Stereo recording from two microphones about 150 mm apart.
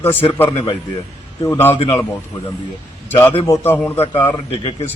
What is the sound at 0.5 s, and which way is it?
Speech, 35° left (ahead or behind).